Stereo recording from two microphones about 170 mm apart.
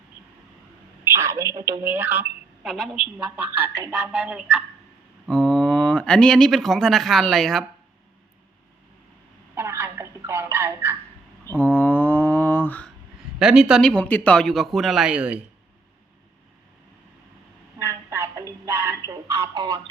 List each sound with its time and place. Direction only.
1.2 s speech: 15° right (ahead or behind)
2.6 s a man's voice: centre (ahead or behind)
3.2 s speech: 10° right (ahead or behind)
5.3 s speech: 5° left (ahead or behind)
9.6 s a sound: 15° right (ahead or behind)
11.4 s mantra: 10° left (ahead or behind)
13.4 s a man's voice: 5° right (ahead or behind)
17.7 s a sound: 15° right (ahead or behind)
19.3 s speech: 30° right (ahead or behind)